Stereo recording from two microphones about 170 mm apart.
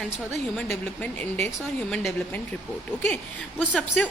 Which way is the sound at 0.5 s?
5° left (ahead or behind).